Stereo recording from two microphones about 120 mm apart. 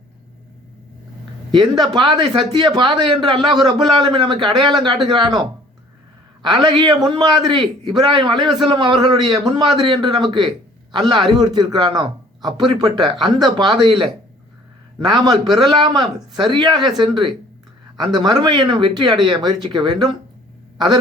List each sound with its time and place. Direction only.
1.5 s a man's voice: 40° right (ahead or behind)
3.3 s speech: centre (ahead or behind)
3.6 s a man's voice: 35° right (ahead or behind)
6.4 s a man's voice: 40° right (ahead or behind)
14.9 s a man's voice: 40° right (ahead or behind)